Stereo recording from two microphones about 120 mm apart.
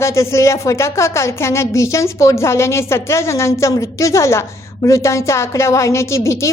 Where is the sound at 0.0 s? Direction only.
25° left (ahead or behind).